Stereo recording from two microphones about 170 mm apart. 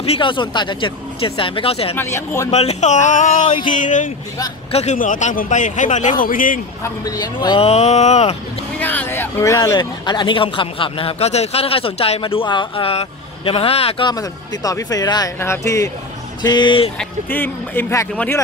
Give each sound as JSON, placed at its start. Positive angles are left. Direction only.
{"t": 0.0, "sound": "speech", "side_deg": 35}
{"t": 2.0, "sound": "speech", "side_deg": 15}
{"t": 2.5, "sound": "a man's voice", "side_deg": 40}
{"t": 3.4, "sound": "speech", "side_deg": 30}
{"t": 3.7, "sound": "a man's voice", "side_deg": 50}
{"t": 6.8, "sound": "speech", "side_deg": 20}
{"t": 8.7, "sound": "speech", "side_deg": 10}
{"t": 17.0, "sound": "speech", "side_deg": 10}